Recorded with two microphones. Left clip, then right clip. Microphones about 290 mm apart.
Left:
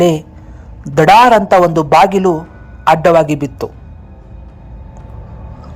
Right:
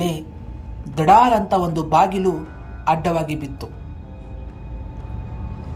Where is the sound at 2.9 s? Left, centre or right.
Left.